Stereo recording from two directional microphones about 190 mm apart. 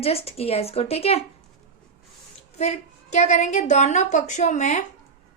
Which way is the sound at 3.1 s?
35° left (ahead or behind).